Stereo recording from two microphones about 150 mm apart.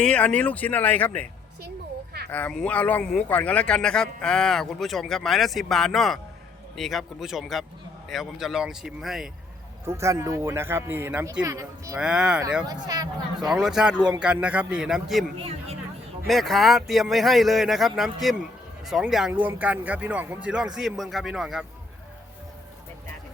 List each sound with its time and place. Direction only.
0.0 s speech: 5° left (ahead or behind)
2.3 s a man's voice: 5° left (ahead or behind)
9.8 s speech: 20° right (ahead or behind)
11.9 s a man's voice: 5° right (ahead or behind)
12.6 s speech: 25° right (ahead or behind)
13.5 s a man's voice: 5° right (ahead or behind)
15.4 s speech: 40° right (ahead or behind)
16.2 s a man's voice: centre (ahead or behind)